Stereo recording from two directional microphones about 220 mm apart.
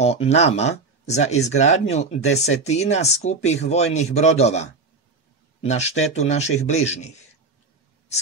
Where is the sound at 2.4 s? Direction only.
30° left (ahead or behind).